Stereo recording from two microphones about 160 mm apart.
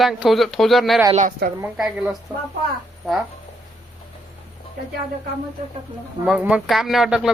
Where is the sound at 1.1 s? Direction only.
55° right (ahead or behind).